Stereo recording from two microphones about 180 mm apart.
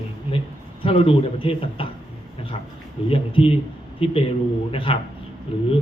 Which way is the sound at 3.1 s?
30° left (ahead or behind).